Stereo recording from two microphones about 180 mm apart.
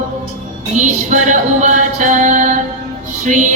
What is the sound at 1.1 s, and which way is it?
Music, 45° right (ahead or behind).